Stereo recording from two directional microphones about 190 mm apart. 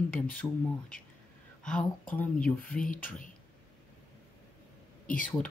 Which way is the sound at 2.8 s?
45° left (ahead or behind).